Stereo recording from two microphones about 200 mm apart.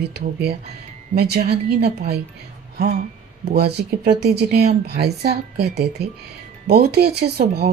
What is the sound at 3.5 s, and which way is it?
Speech, 55° right (ahead or behind).